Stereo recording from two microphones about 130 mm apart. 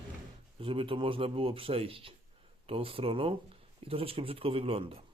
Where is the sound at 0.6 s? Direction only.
45° right (ahead or behind).